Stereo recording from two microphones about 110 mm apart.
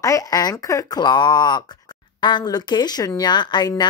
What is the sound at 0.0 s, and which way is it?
Speech, 30° left (ahead or behind).